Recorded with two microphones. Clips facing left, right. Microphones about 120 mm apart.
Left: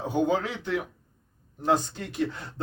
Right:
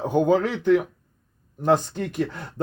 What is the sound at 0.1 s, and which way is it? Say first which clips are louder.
Speech: right 5 dB; 50° right (ahead or behind).